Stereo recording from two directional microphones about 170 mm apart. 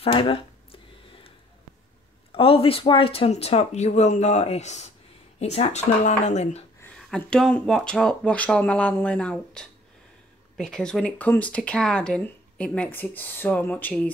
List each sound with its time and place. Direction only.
0.0 s speech: 35° left (ahead or behind)
2.3 s speech: 30° left (ahead or behind)
6.8 s speech: 5° left (ahead or behind)